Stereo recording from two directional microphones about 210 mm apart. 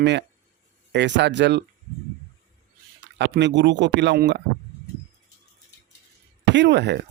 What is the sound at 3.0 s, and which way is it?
Speech, 55° right (ahead or behind).